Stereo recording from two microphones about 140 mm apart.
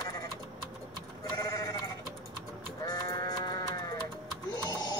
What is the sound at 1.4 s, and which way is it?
Sheep, 25° left (ahead or behind).